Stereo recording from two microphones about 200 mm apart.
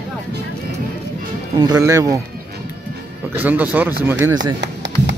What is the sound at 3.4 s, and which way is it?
Speech, 10° right (ahead or behind).